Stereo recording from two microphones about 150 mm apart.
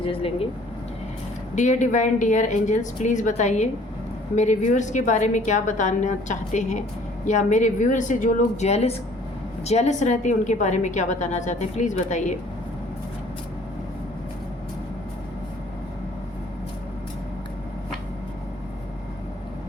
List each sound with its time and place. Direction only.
0.0 s speech: 35° left (ahead or behind)
1.5 s a woman's voice: 55° left (ahead or behind)